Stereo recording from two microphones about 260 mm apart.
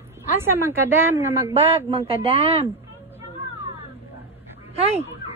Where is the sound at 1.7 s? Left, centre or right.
Right.